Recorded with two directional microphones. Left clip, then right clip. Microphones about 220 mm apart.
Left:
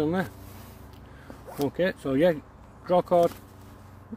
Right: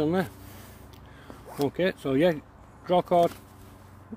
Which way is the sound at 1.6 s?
20° right (ahead or behind).